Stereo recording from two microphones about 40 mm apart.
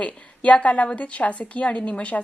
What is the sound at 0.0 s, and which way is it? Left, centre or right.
A woman's voice, left.